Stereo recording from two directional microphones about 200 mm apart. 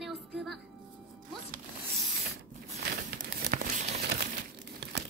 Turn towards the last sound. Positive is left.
turn(degrees=-45)  # may be behind; listen again after turning